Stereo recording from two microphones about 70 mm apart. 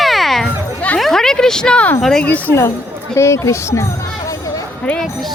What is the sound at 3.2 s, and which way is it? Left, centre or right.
Speech, left.